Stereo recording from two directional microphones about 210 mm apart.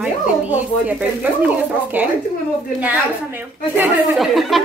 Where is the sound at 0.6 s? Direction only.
5° right (ahead or behind).